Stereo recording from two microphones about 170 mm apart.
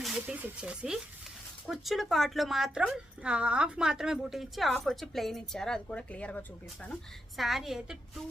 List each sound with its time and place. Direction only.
0.0 s speech: 5° right (ahead or behind)